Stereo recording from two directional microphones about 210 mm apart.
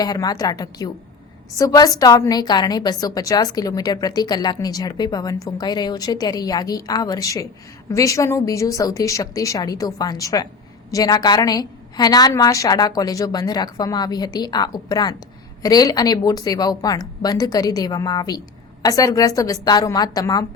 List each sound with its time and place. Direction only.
0.0 s a woman's voice: 20° left (ahead or behind)